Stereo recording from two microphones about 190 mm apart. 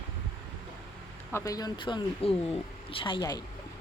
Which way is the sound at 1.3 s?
20° left (ahead or behind).